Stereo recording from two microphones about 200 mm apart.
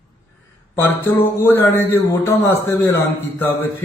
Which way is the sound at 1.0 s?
10° left (ahead or behind).